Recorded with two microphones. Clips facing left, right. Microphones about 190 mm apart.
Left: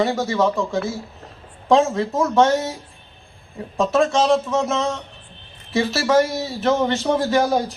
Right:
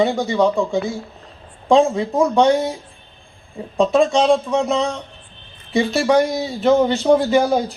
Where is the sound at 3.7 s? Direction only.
15° right (ahead or behind).